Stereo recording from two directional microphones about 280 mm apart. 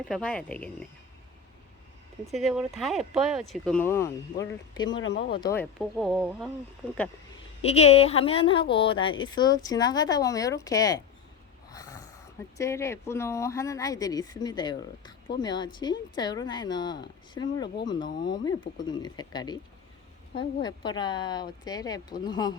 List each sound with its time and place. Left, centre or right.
0.1 s speech: centre
2.3 s speech: centre
4.9 s speech: left
5.3 s speech: centre
7.6 s a woman's voice: left
11.7 s a sound: centre
12.5 s speech: centre